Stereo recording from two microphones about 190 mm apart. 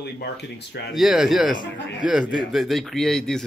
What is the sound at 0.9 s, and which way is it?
Speech, centre (ahead or behind).